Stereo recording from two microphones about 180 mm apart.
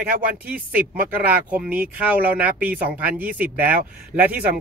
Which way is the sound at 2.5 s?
50° right (ahead or behind).